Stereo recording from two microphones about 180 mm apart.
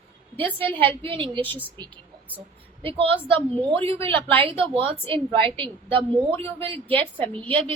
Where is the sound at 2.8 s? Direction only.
30° right (ahead or behind).